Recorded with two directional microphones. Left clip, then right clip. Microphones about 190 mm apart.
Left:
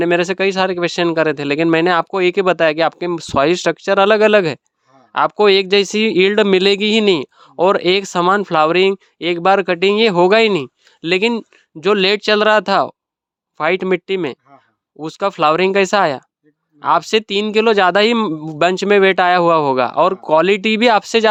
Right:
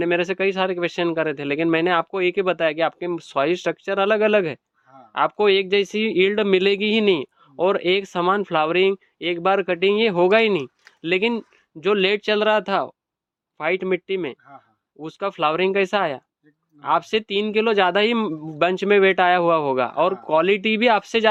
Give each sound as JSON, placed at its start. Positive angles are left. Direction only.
{"t": 0.0, "sound": "a man's voice", "side_deg": 35}